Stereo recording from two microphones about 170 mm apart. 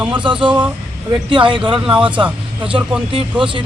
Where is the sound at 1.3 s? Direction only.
30° right (ahead or behind).